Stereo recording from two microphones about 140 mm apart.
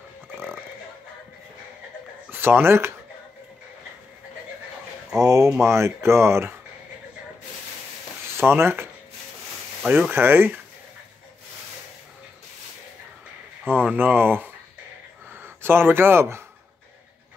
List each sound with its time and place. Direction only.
2.3 s speech: 15° right (ahead or behind)
5.2 s speech: 25° right (ahead or behind)
8.4 s speech: 15° right (ahead or behind)
9.8 s speech: 10° right (ahead or behind)
13.8 s speech: 15° right (ahead or behind)